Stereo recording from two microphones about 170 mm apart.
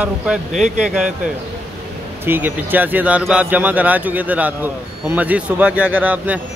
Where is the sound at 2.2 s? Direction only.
10° right (ahead or behind).